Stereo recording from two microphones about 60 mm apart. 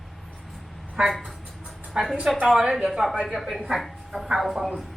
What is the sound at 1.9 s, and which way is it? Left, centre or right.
A woman's voice, centre.